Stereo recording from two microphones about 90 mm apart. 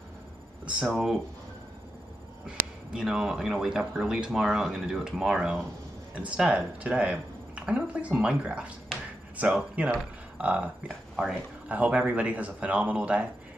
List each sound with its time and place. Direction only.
0.8 s speech: 5° right (ahead or behind)
2.4 s speech: 10° right (ahead or behind)